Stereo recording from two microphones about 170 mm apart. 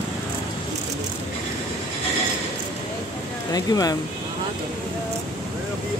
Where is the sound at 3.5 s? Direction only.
20° left (ahead or behind).